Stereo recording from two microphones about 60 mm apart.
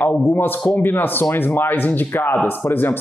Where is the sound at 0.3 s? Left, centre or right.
Left.